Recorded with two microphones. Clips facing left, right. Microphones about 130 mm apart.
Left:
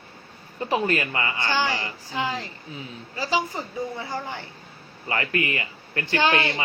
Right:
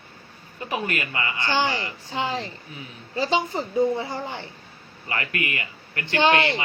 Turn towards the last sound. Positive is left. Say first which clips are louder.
# right 2 dB
turn(degrees=-25)  # may be behind; listen again after turning